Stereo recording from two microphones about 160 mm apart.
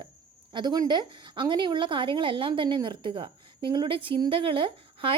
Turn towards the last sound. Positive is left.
turn(degrees=-35)  # may be behind; listen again after turning